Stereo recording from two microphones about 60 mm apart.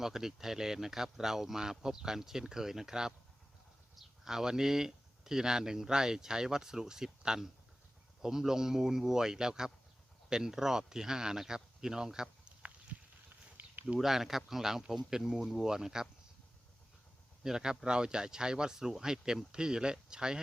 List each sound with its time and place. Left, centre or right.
0.0 s speech: centre
13.6 s a sound: right
14.0 s speech: centre
17.4 s speech: centre